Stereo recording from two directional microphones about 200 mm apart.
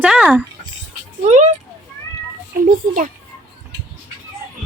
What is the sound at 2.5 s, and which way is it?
Speech, 45° right (ahead or behind).